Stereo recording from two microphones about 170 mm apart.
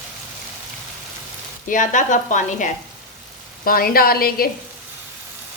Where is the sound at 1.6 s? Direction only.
50° left (ahead or behind).